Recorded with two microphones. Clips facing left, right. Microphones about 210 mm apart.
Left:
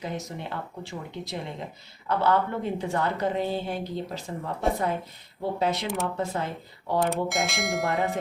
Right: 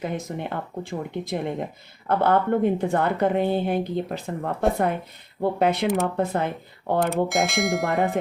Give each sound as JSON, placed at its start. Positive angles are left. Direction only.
{"t": 0.0, "sound": "a woman's voice", "side_deg": -55}
{"t": 7.1, "sound": "bell", "side_deg": 0}
{"t": 7.9, "sound": "a woman's voice", "side_deg": -55}